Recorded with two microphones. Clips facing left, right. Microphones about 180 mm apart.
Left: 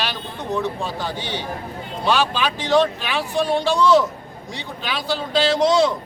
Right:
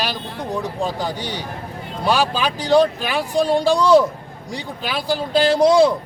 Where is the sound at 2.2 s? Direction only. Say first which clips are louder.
Right 2 dB; 35° right (ahead or behind).